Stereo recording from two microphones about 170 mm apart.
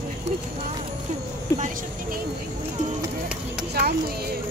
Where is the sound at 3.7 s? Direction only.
65° right (ahead or behind).